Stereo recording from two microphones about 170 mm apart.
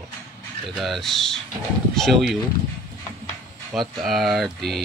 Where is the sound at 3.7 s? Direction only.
Centre (ahead or behind).